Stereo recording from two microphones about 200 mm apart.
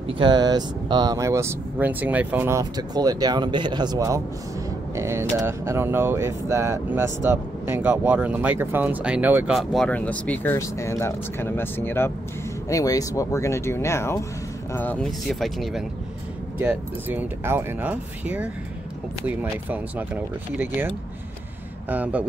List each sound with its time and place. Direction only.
0.2 s speech: 20° right (ahead or behind)